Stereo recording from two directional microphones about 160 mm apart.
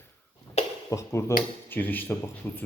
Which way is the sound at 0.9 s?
20° left (ahead or behind).